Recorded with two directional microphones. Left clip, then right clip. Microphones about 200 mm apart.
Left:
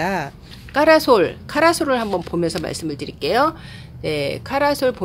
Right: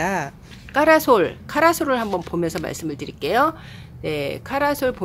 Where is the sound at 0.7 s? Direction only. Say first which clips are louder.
Left 2 dB; centre (ahead or behind).